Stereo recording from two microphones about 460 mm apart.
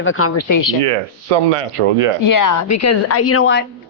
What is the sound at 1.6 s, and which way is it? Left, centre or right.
Speech, right.